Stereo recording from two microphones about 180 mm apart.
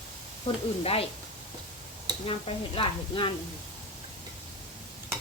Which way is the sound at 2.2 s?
30° left (ahead or behind).